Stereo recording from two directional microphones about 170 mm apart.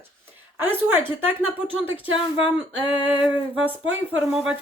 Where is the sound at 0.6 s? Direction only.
10° right (ahead or behind).